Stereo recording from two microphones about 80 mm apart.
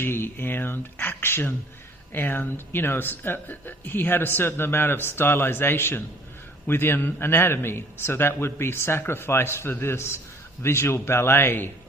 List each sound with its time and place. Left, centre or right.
0.0 s a man's voice: left